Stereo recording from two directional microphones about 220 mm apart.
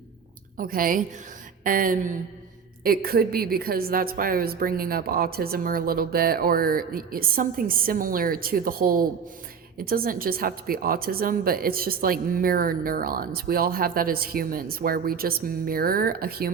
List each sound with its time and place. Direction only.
0.5 s a woman's voice: 40° right (ahead or behind)